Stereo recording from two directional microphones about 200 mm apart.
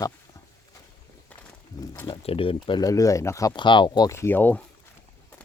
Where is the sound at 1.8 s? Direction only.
15° left (ahead or behind).